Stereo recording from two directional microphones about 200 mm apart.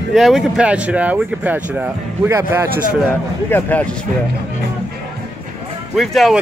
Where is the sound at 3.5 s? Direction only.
10° left (ahead or behind).